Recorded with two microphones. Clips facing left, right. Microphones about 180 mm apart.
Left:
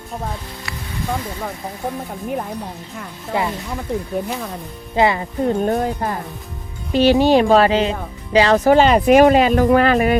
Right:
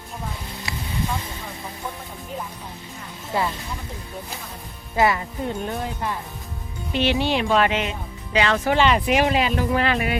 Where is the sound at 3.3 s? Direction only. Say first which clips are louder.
Left 3 dB; 90° left.